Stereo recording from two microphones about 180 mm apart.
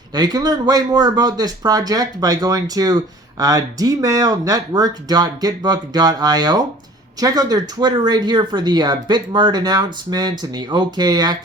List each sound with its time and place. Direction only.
0.1 s speech: 20° right (ahead or behind)